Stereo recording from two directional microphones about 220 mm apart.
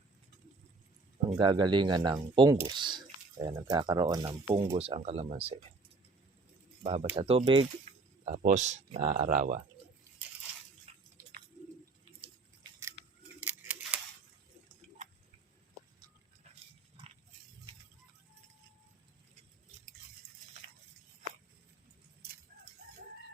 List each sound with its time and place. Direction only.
1.3 s speech: 20° right (ahead or behind)
6.8 s speech: 25° right (ahead or behind)
8.2 s speech: 35° right (ahead or behind)
10.9 s a sound: 30° right (ahead or behind)
13.2 s scissors: 10° right (ahead or behind)